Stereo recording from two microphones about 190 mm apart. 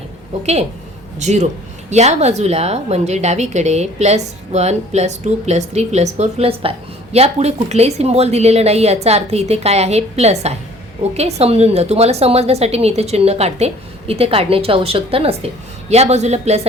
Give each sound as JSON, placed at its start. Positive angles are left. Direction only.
{"t": 1.2, "sound": "a woman's voice", "side_deg": -35}